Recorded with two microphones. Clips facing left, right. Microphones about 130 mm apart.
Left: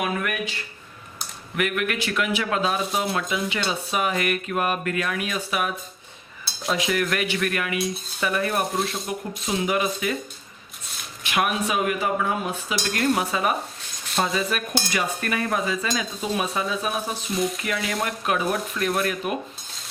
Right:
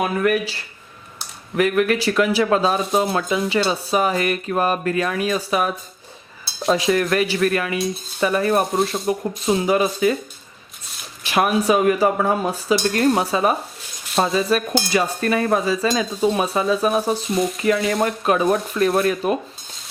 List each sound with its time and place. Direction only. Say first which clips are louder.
0.0 s dishes: right 7 dB; 35° right (ahead or behind)
1.5 s dishes: right 8 dB; 35° right (ahead or behind)
11.2 s dishes: right 5 dB; 35° right (ahead or behind)
17.2 s speech: right 4 dB; centre (ahead or behind)
17.7 s dishes: right 8 dB; 30° right (ahead or behind)